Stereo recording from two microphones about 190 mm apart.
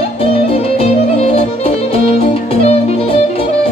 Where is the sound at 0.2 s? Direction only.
30° left (ahead or behind).